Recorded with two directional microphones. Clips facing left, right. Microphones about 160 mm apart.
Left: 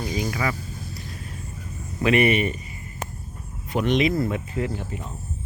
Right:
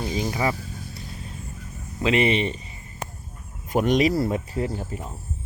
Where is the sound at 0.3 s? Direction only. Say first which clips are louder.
Right 4 dB; 25° right (ahead or behind).